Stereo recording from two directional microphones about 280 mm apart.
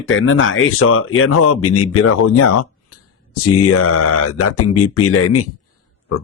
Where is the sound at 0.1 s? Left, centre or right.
Left.